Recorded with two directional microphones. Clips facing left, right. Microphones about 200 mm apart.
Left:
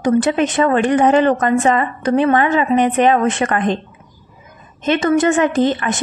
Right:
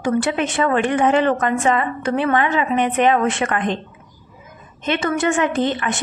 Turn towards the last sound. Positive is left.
turn(degrees=40)  # may be behind; listen again after turning